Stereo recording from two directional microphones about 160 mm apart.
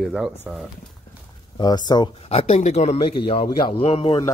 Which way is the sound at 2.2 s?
40° left (ahead or behind).